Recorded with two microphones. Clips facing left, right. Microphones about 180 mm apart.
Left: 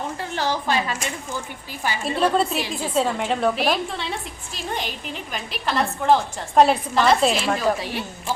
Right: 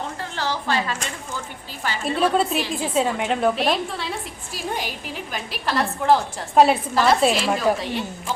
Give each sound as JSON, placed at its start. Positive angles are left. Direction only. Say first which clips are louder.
{"t": 0.3, "sound": "a woman's voice", "louder": "left 1 dB", "side_deg": 15}
{"t": 2.1, "sound": "a woman's voice", "louder": "right 1 dB", "side_deg": -5}